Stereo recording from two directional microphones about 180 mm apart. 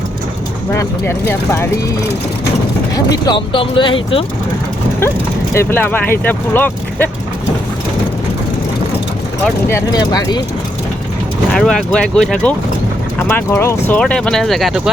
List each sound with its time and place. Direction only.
0.7 s speech: 15° left (ahead or behind)
3.2 s speech: 25° left (ahead or behind)
5.5 s speech: 10° left (ahead or behind)
9.6 s speech: 20° left (ahead or behind)
11.5 s speech: 5° left (ahead or behind)